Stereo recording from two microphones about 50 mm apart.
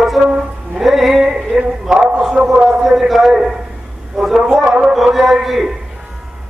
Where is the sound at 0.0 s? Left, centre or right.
Centre.